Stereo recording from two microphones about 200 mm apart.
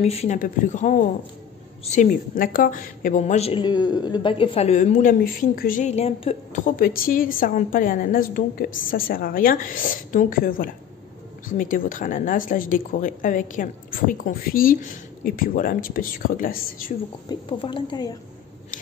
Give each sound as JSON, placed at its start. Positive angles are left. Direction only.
{"t": 0.0, "sound": "a woman's voice", "side_deg": 30}
{"t": 17.3, "sound": "speech", "side_deg": 25}